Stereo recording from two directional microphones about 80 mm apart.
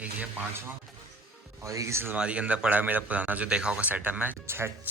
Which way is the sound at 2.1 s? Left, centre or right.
Centre.